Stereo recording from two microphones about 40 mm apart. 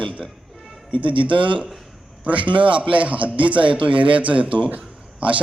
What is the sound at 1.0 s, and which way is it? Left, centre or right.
A man's voice, right.